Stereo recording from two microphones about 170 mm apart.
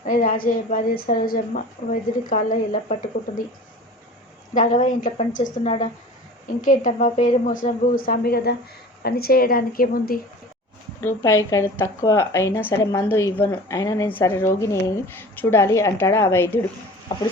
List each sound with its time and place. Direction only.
0.0 s a woman's voice: 50° left (ahead or behind)
4.5 s a woman's voice: 45° left (ahead or behind); by 10.2 s 60° left (ahead or behind)
11.0 s speech: 15° left (ahead or behind)